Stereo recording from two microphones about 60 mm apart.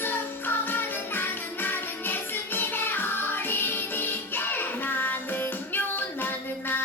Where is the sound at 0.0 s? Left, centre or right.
Left.